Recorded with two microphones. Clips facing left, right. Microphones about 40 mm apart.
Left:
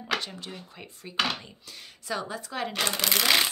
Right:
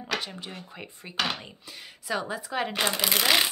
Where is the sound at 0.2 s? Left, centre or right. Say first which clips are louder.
Right 1 dB; centre.